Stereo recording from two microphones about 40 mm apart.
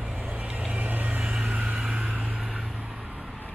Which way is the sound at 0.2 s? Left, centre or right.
Right.